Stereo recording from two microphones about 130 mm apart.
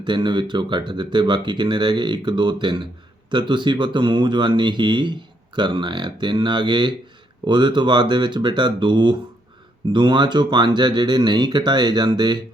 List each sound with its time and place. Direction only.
0.0 s speech: 35° right (ahead or behind)